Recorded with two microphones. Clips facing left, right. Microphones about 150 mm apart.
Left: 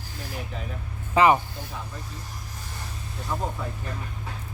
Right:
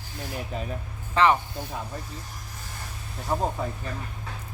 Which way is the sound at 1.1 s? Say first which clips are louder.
Left 2 dB; 10° left (ahead or behind).